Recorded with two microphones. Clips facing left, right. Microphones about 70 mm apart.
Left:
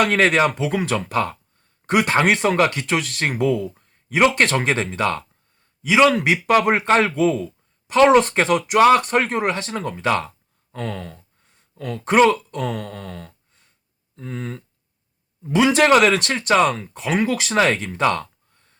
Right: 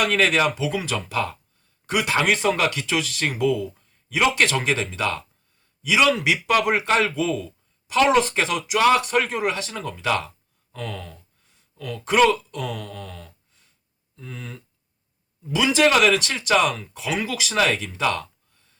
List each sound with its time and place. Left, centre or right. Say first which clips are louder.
0.0 s speech: left 3 dB; left
15.5 s speech: left 4 dB; left